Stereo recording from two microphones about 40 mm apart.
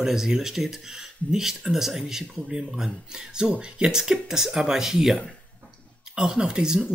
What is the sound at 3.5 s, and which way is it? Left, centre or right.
Speech, right.